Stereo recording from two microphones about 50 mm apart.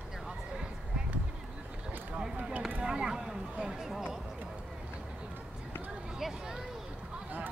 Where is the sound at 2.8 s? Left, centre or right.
Centre.